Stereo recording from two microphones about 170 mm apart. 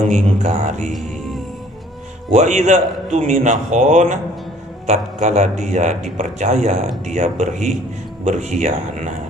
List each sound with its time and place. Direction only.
0.1 s speech: 45° right (ahead or behind)
2.3 s speech: 45° right (ahead or behind)